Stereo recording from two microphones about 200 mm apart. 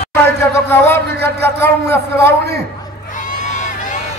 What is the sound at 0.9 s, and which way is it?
A man's voice, 55° right (ahead or behind).